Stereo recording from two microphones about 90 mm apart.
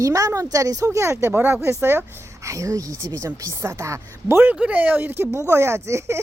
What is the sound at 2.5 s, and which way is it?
Speech, 35° right (ahead or behind).